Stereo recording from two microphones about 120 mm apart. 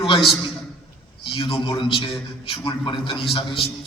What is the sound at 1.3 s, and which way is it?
A man's voice, 45° left (ahead or behind).